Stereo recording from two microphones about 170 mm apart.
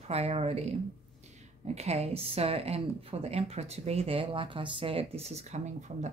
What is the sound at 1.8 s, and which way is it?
Speech, 40° right (ahead or behind).